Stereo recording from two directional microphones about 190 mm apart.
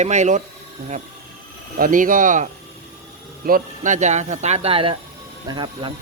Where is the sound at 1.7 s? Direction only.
45° right (ahead or behind).